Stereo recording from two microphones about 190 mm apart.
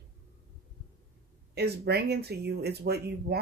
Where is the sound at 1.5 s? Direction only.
55° right (ahead or behind).